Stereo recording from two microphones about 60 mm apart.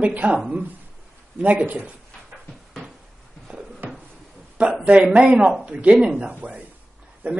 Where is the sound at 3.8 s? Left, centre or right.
Right.